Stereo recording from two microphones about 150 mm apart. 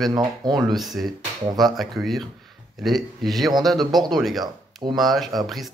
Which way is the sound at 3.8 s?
25° right (ahead or behind).